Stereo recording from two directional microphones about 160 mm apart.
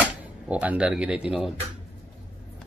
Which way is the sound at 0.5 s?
10° right (ahead or behind).